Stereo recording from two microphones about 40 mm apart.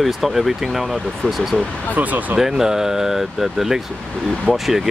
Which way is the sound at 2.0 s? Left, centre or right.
Right.